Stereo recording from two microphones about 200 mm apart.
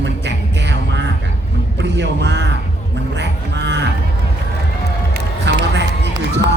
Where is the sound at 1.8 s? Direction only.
60° right (ahead or behind).